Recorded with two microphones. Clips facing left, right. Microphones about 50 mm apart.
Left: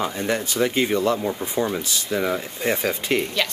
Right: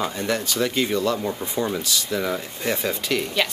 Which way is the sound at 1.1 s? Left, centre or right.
Centre.